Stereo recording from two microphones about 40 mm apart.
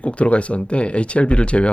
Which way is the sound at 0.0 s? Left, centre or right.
Left.